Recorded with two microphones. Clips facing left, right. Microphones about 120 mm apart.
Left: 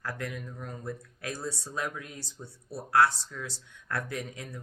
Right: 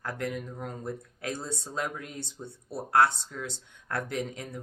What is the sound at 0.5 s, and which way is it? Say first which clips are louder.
Speech: right 2 dB; 25° right (ahead or behind).